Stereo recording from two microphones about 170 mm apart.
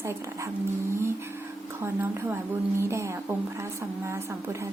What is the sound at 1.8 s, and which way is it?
A woman's voice, 10° right (ahead or behind).